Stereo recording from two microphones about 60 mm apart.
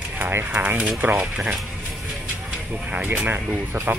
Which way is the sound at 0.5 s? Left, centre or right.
Right.